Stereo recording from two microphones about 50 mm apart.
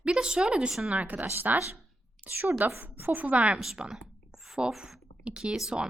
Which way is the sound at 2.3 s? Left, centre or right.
Right.